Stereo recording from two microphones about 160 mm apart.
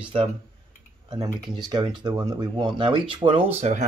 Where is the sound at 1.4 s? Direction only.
25° right (ahead or behind).